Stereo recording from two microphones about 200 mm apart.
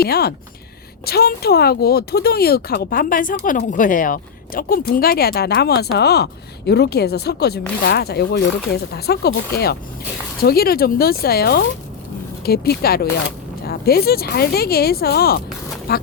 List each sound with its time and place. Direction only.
0.0 s speech: 50° left (ahead or behind)